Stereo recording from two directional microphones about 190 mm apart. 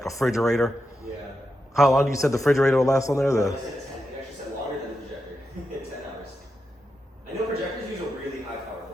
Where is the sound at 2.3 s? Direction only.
15° left (ahead or behind).